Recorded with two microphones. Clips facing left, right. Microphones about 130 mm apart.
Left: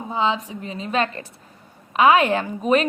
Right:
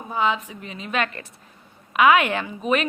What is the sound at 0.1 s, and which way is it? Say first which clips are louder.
Speech: left 1 dB; 25° left (ahead or behind).